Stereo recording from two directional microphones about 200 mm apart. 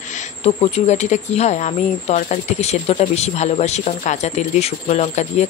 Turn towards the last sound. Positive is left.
turn(degrees=35)  # may be behind; listen again after turning